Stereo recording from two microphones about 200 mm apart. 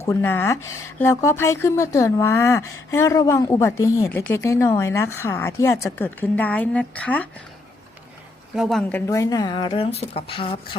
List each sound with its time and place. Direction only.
0.0 s speech: 10° left (ahead or behind)
8.5 s speech: centre (ahead or behind); by 10.6 s 25° left (ahead or behind)